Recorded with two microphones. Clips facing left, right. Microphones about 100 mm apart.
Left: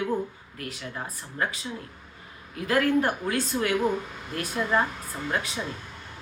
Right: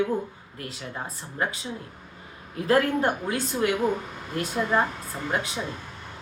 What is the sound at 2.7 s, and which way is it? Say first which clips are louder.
Speech: right 1 dB; 30° right (ahead or behind).